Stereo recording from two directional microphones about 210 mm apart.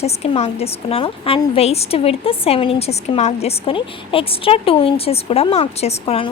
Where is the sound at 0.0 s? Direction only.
30° left (ahead or behind).